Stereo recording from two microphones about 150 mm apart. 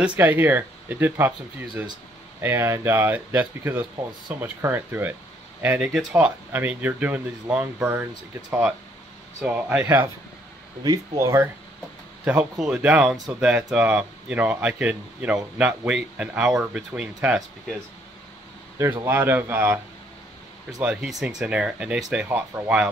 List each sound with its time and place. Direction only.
0.0 s speech: 10° right (ahead or behind)
2.4 s speech: 15° right (ahead or behind)
10.8 s speech: 25° right (ahead or behind)
12.3 s speech: 5° right (ahead or behind)
19.0 s speech: 15° right (ahead or behind)
20.8 s speech: 5° right (ahead or behind)